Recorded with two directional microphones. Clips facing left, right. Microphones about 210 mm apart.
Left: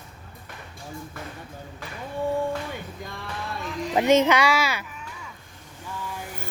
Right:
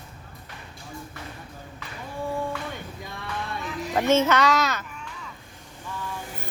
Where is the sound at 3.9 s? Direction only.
15° left (ahead or behind).